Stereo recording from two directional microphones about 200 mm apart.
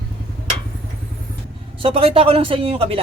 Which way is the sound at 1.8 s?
30° right (ahead or behind).